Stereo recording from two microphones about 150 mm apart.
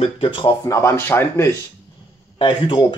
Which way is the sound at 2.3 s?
35° left (ahead or behind).